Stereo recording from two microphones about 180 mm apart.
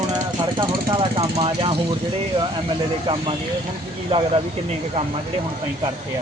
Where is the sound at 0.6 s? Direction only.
30° right (ahead or behind).